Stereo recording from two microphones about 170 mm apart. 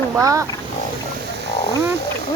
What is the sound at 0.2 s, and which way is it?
Speech, 20° right (ahead or behind).